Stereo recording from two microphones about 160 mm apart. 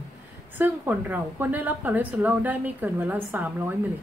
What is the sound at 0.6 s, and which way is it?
A woman's voice, 10° right (ahead or behind).